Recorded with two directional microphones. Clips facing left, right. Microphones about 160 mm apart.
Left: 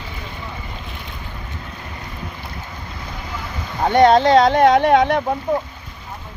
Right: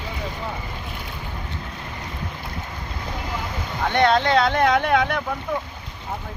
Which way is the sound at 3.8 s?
35° left (ahead or behind).